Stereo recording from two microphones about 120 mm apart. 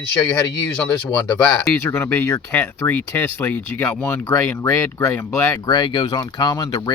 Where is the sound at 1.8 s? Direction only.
20° left (ahead or behind).